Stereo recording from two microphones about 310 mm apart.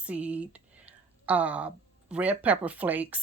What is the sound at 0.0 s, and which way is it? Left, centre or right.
Speech, centre.